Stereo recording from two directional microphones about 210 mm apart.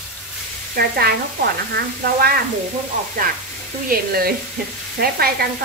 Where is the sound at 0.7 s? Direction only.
45° right (ahead or behind).